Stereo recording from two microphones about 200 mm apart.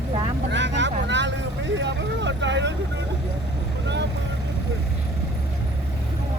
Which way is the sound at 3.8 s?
60° right (ahead or behind).